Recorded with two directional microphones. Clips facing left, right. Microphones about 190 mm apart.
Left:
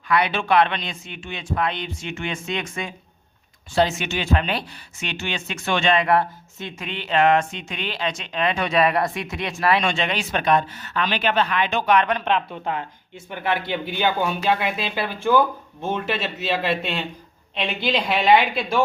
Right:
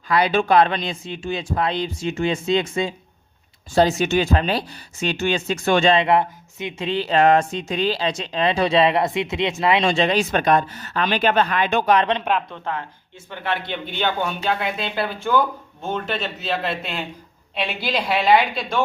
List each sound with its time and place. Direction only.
0.1 s speech: 40° right (ahead or behind)
3.8 s speech: 40° right (ahead or behind); by 6.8 s 20° right (ahead or behind)
6.8 s speech: 35° right (ahead or behind)
9.9 s speech: 35° right (ahead or behind)
11.9 s a man's voice: 25° right (ahead or behind)
12.5 s a woman's voice: 15° left (ahead or behind); by 18.8 s centre (ahead or behind)